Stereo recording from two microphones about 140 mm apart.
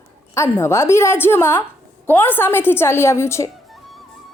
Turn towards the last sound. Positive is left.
turn(degrees=20)  # may be behind; listen again after turning